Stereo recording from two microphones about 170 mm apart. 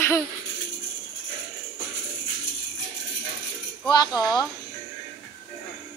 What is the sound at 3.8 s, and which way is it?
Speech, 25° left (ahead or behind).